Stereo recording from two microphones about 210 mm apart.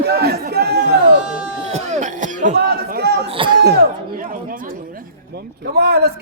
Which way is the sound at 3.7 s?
45° right (ahead or behind).